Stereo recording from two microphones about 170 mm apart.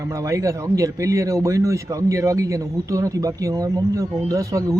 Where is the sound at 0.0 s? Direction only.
20° right (ahead or behind).